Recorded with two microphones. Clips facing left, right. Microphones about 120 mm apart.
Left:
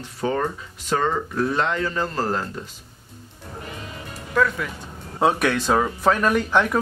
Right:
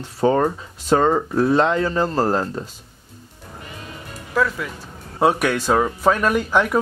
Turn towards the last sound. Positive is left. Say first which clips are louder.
# right 1 dB
turn(degrees=-10)  # may be behind; listen again after turning